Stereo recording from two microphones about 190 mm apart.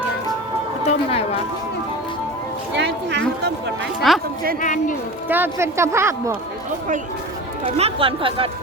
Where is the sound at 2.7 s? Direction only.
65° right (ahead or behind).